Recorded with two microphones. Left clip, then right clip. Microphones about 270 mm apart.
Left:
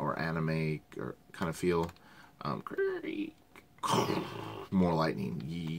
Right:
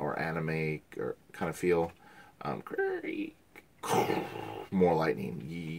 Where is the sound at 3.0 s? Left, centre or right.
Centre.